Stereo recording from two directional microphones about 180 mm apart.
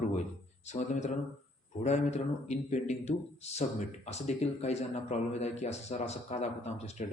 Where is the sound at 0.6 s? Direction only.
40° left (ahead or behind).